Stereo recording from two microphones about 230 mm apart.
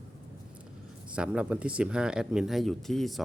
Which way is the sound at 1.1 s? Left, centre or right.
Centre.